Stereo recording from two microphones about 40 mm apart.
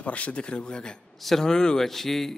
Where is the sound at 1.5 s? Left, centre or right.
Centre.